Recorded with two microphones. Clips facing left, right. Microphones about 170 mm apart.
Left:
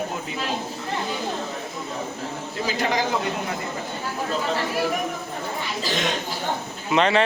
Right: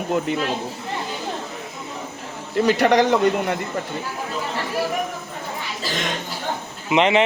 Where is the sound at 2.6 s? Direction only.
70° right (ahead or behind).